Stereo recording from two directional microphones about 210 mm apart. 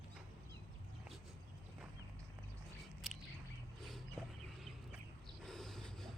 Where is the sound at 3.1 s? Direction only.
Centre (ahead or behind).